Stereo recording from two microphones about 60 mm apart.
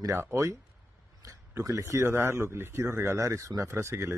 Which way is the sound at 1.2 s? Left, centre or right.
Right.